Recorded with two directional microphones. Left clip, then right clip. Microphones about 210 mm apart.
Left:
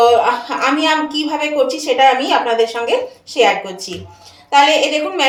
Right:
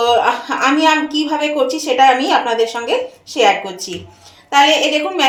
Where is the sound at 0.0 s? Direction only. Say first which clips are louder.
Left 2 dB; 30° right (ahead or behind).